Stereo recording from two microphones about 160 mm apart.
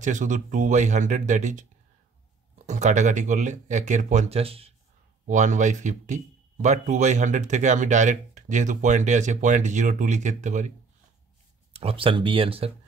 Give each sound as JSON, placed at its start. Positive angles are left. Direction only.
{"t": 0.0, "sound": "speech", "side_deg": -50}
{"t": 5.2, "sound": "speech", "side_deg": -50}
{"t": 11.7, "sound": "speech", "side_deg": -35}